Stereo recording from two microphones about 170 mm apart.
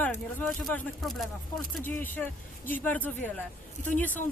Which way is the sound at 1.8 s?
10° left (ahead or behind).